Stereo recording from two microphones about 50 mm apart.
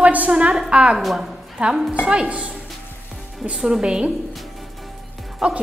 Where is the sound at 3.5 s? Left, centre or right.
Centre.